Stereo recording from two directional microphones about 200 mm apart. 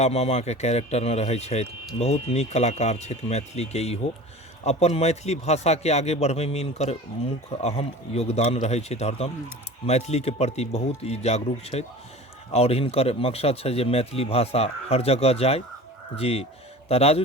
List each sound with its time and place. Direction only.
0.0 s speech: 30° left (ahead or behind)